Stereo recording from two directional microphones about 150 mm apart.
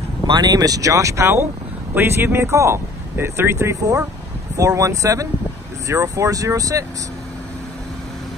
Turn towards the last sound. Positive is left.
turn(degrees=-20)  # may be behind; listen again after turning